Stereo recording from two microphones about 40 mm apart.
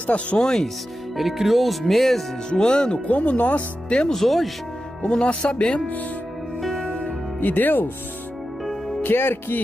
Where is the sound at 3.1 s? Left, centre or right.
Left.